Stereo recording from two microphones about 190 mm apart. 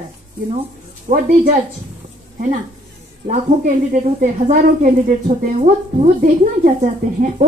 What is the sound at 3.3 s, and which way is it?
A woman's voice, 40° right (ahead or behind).